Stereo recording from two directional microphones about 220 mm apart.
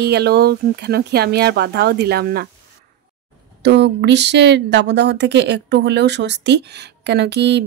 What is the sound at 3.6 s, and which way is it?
Speech, 50° right (ahead or behind).